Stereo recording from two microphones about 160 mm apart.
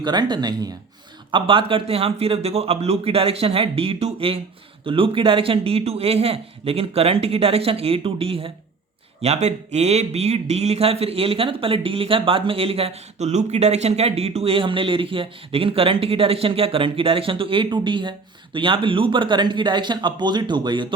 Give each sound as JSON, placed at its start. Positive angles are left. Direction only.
{"t": 0.0, "sound": "speech", "side_deg": -25}